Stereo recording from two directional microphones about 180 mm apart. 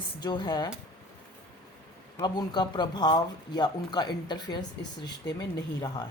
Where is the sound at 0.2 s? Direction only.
25° left (ahead or behind).